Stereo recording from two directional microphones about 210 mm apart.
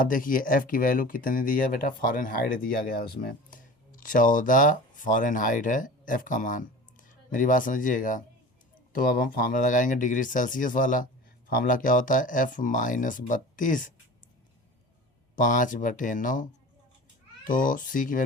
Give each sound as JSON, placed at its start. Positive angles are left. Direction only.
{"t": 0.0, "sound": "speech", "side_deg": 40}
{"t": 15.4, "sound": "speech", "side_deg": 40}